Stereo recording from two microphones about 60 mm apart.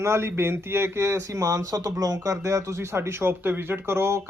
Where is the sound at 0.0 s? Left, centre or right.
Right.